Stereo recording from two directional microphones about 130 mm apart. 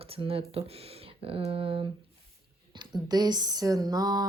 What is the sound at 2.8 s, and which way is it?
Speech, 30° right (ahead or behind).